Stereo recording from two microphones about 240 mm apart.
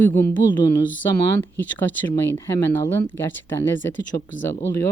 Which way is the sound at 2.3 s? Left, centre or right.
Centre.